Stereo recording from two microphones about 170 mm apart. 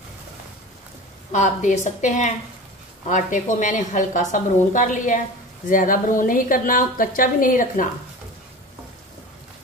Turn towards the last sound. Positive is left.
turn(degrees=50)  # may be behind; listen again after turning